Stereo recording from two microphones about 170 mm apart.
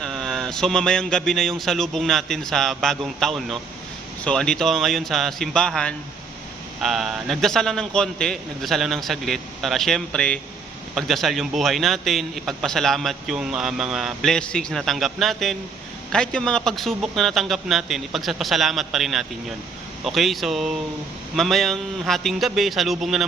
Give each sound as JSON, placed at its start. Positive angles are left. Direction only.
{"t": 0.0, "sound": "speech", "side_deg": 0}